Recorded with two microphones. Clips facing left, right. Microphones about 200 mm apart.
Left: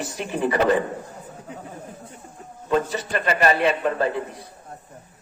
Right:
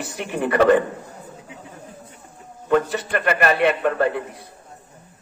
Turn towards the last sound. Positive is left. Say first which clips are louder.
# right 2 dB
turn(degrees=-60)  # may be behind; listen again after turning